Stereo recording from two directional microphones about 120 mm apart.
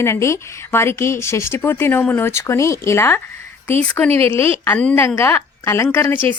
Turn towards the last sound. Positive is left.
turn(degrees=15)  # may be behind; listen again after turning